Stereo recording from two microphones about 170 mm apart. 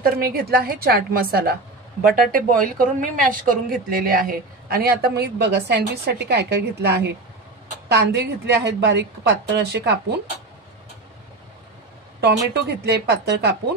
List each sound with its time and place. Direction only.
0.0 s a woman's voice: 60° right (ahead or behind)
12.5 s a woman's voice: 75° right (ahead or behind)